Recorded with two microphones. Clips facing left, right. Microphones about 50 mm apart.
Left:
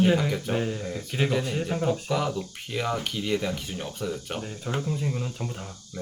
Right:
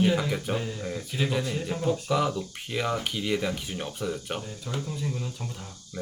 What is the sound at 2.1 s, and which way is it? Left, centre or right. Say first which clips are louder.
Speech: right 1 dB; centre.